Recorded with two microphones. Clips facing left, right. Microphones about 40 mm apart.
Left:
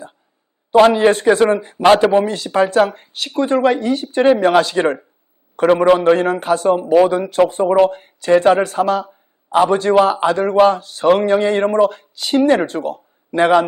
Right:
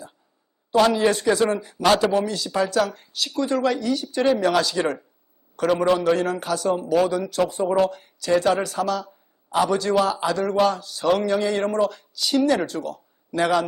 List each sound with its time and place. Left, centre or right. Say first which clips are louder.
0.7 s a man's voice: left 7 dB; left